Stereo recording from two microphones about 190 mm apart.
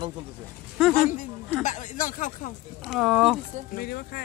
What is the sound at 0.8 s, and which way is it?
Speech, centre (ahead or behind).